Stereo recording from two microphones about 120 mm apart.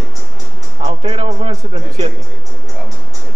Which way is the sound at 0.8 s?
60° right (ahead or behind).